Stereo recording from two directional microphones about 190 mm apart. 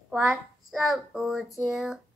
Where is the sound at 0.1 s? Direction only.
Centre (ahead or behind).